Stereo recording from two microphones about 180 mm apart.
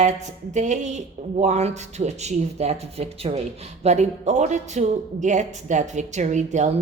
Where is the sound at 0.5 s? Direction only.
40° right (ahead or behind).